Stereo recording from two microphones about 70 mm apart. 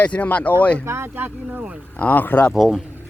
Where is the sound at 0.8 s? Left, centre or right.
Right.